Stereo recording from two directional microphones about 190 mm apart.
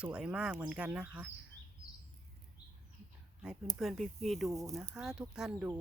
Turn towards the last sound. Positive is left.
turn(degrees=-5)  # may be behind; listen again after turning